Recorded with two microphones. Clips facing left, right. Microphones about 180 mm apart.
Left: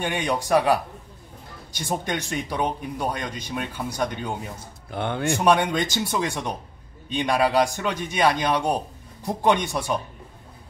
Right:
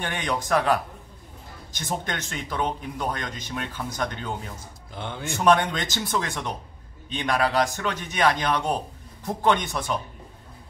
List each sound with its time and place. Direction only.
0.0 s a man's voice: 10° left (ahead or behind)
4.9 s speech: 60° left (ahead or behind)
5.4 s a man's voice: 10° left (ahead or behind)